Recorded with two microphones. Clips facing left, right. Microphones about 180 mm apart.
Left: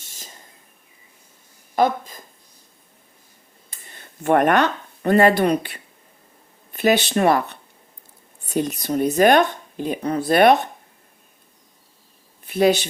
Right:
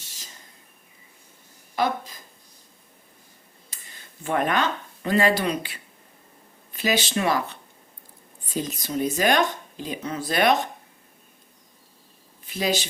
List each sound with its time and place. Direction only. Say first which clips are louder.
0.0 s a sound: left 4 dB; 50° left (ahead or behind)
1.7 s speech: left 6 dB; 50° left (ahead or behind)
3.7 s speech: left 5 dB; 55° left (ahead or behind)
12.5 s speech: left 8 dB; 55° left (ahead or behind)